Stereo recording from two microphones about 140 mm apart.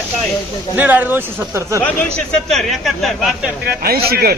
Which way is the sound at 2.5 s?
Centre (ahead or behind).